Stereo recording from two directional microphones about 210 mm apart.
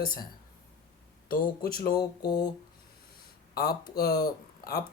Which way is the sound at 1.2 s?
40° left (ahead or behind).